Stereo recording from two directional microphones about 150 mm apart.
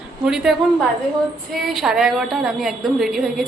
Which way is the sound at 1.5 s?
Centre (ahead or behind).